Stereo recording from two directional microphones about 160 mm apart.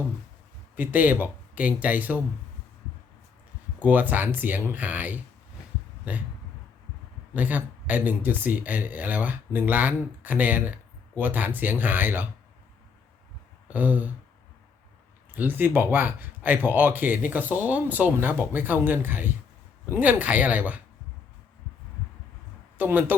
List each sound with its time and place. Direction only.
0.8 s speech: 10° right (ahead or behind)
3.8 s speech: 10° right (ahead or behind)
7.3 s speech: 10° right (ahead or behind)
13.7 s speech: 10° right (ahead or behind)
15.3 s speech: 10° right (ahead or behind)
22.8 s speech: 10° right (ahead or behind)